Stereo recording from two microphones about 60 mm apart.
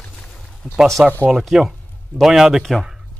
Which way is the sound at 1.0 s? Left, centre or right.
Right.